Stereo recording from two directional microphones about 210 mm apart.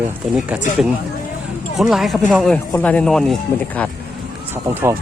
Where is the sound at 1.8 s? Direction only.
Centre (ahead or behind).